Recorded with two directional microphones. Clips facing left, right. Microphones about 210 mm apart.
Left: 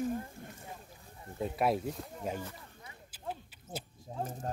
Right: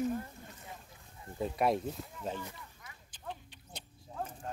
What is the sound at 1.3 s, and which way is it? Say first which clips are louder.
Speech: even; centre (ahead or behind).